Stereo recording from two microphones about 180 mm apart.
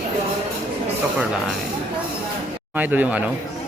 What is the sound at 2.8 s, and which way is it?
Speech, 10° right (ahead or behind).